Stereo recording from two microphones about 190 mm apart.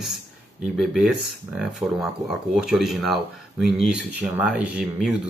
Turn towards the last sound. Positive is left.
turn(degrees=-5)  # may be behind; listen again after turning